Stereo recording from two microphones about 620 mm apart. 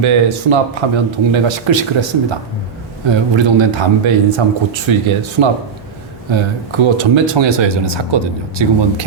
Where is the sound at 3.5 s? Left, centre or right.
Right.